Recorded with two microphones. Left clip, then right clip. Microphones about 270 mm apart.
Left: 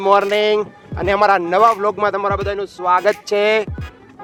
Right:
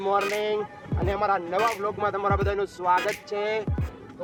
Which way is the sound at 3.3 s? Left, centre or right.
Left.